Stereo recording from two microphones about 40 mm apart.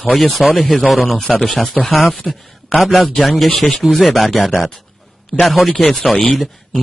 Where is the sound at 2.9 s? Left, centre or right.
Left.